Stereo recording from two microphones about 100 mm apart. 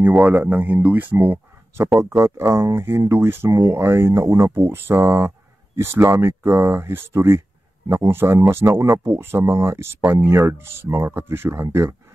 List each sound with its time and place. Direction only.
0.2 s speech: 15° right (ahead or behind)